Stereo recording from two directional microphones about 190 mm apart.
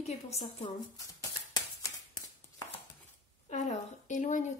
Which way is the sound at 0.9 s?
20° left (ahead or behind).